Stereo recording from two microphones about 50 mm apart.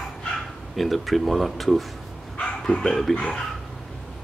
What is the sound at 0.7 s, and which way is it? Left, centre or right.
Speech, centre.